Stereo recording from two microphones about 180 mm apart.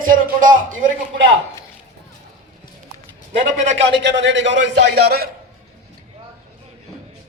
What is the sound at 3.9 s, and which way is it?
Speech, 75° right (ahead or behind).